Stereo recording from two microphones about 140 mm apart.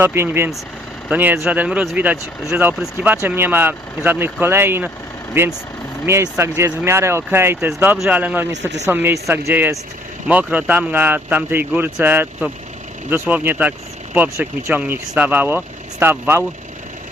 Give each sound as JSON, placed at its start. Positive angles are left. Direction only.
{"t": 0.0, "sound": "speech", "side_deg": -15}